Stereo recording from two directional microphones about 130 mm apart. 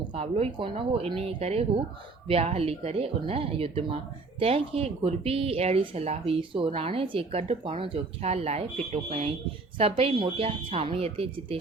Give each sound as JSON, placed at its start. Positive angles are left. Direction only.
{"t": 0.1, "sound": "speech", "side_deg": -50}